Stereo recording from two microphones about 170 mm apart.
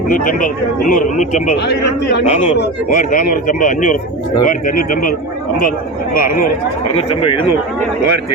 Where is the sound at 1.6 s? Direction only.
80° left.